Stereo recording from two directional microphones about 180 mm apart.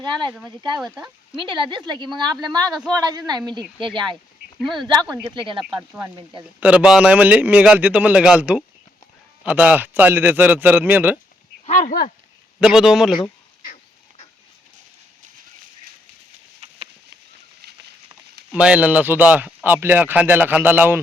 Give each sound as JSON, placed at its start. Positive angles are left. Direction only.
{"t": 0.0, "sound": "speech", "side_deg": -25}
{"t": 1.4, "sound": "speech", "side_deg": -25}
{"t": 6.6, "sound": "speech", "side_deg": -5}
{"t": 11.6, "sound": "speech", "side_deg": 40}
{"t": 12.5, "sound": "a man's voice", "side_deg": -5}
{"t": 16.6, "sound": "a sound", "side_deg": -35}
{"t": 18.1, "sound": "speech", "side_deg": -5}